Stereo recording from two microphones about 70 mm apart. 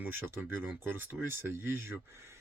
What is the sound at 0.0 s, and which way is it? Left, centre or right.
Speech, right.